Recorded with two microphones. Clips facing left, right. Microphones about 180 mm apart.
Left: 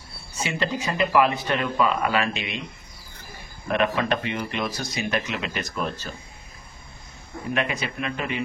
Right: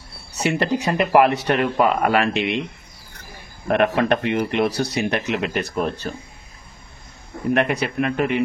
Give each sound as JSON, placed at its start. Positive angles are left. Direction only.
{"t": 0.3, "sound": "speech", "side_deg": -70}
{"t": 3.6, "sound": "speech", "side_deg": -60}
{"t": 7.5, "sound": "speech", "side_deg": -65}